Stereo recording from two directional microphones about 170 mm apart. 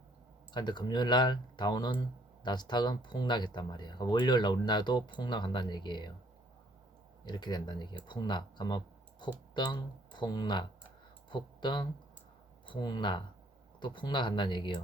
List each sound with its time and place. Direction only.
0.5 s speech: 25° left (ahead or behind)
7.3 s speech: 25° left (ahead or behind)